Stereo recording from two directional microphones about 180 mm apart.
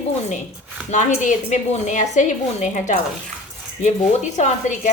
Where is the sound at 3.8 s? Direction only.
40° left (ahead or behind).